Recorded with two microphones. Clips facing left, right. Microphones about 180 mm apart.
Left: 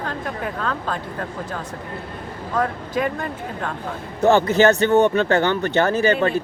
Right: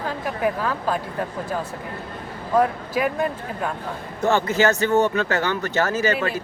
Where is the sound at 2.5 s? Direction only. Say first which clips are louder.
Right 3 dB; 10° right (ahead or behind).